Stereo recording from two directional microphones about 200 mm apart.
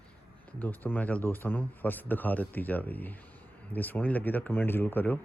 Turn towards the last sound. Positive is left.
turn(degrees=10)  # may be behind; listen again after turning